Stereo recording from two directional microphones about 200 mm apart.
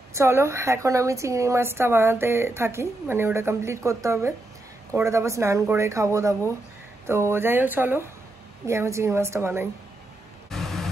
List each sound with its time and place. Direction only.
0.1 s a woman's voice: 15° right (ahead or behind)
10.5 s white noise: centre (ahead or behind)